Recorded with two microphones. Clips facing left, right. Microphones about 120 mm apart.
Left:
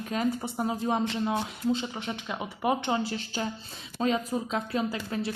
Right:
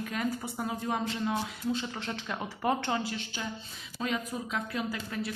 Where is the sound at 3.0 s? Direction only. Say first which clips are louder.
Left 5 dB; 35° left (ahead or behind).